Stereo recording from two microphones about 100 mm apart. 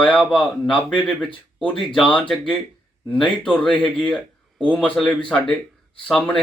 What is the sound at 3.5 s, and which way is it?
A man's voice, 10° left (ahead or behind).